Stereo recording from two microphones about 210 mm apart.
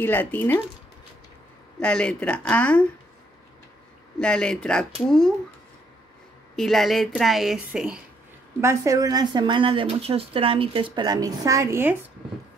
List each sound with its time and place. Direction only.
0.0 s speech: 10° left (ahead or behind)
1.8 s speech: 5° left (ahead or behind)
4.2 s speech: 5° left (ahead or behind)
6.5 s speech: centre (ahead or behind)
8.5 s speech: 15° right (ahead or behind)